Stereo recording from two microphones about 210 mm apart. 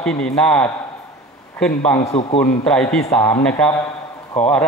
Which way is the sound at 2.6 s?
5° left (ahead or behind).